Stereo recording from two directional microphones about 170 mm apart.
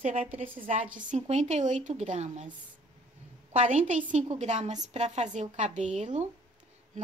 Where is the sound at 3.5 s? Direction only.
40° right (ahead or behind).